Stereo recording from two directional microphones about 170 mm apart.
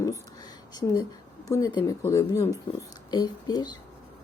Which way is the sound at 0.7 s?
25° left (ahead or behind).